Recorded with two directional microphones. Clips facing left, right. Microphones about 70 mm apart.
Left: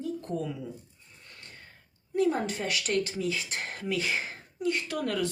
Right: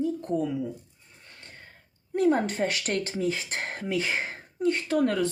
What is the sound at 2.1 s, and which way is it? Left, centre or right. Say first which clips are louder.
Speech: right 3 dB; right.